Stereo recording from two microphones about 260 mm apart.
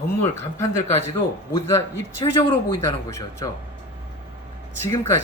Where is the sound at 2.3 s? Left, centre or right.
Centre.